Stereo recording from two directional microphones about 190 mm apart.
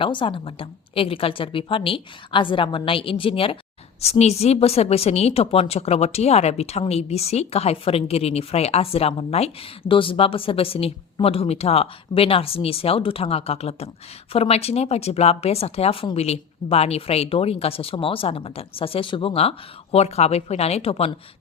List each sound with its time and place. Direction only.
0.0 s a woman's voice: 25° left (ahead or behind)